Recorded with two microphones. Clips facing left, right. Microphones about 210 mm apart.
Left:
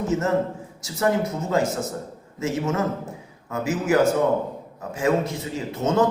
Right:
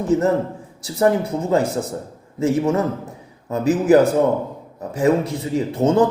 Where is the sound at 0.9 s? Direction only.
30° right (ahead or behind).